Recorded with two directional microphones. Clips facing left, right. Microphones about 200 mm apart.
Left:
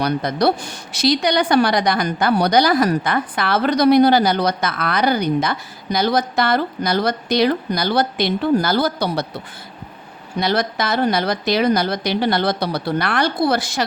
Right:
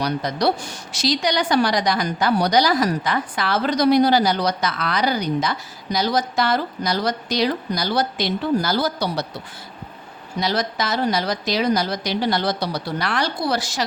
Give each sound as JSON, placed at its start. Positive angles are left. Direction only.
{"t": 0.0, "sound": "a woman's voice", "side_deg": 55}
{"t": 10.4, "sound": "a woman's voice", "side_deg": 55}